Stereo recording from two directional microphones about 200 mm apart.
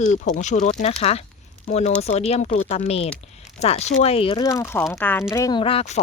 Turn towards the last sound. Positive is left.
turn(degrees=30)  # may be behind; listen again after turning